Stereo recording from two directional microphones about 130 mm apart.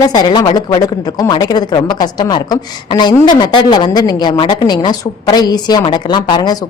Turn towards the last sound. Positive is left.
turn(degrees=35)  # may be behind; listen again after turning